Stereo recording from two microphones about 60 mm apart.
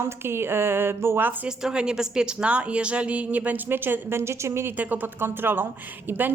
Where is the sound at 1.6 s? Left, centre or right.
Centre; by 4.7 s right.